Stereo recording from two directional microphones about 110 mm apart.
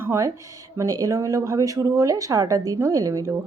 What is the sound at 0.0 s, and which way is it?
A woman's voice, 25° right (ahead or behind).